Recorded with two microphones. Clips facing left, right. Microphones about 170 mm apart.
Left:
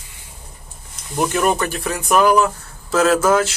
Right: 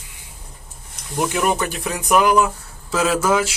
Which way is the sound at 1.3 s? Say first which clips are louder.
Left 2 dB; 10° right (ahead or behind).